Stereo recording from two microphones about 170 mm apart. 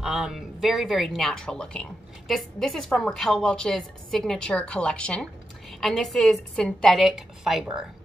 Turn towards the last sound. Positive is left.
turn(degrees=0)  # may be behind; listen again after turning